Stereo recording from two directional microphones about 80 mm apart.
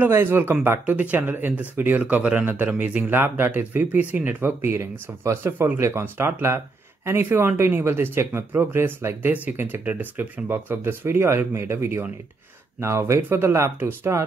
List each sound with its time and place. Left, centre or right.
0.1 s speech: right